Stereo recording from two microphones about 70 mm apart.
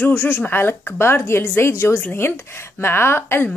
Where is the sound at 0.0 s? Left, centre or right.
Left.